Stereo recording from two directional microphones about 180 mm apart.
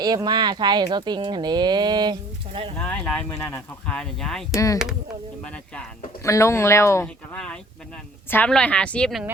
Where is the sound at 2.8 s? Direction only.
10° left (ahead or behind).